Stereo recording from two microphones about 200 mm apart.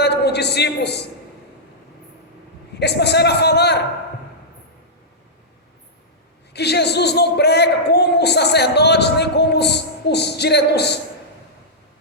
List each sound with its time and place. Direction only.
0.0 s a sound: 55° left (ahead or behind)
2.7 s a man's voice: 55° left (ahead or behind)
6.5 s a man's voice: 55° left (ahead or behind)